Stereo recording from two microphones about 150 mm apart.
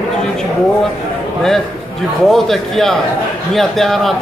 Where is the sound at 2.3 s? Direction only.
Centre (ahead or behind).